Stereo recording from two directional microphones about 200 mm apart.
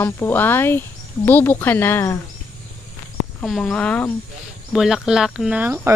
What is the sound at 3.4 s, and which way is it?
Speech, centre (ahead or behind).